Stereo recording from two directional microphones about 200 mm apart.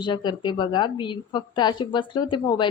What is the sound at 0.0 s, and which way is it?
A woman's voice, 20° left (ahead or behind).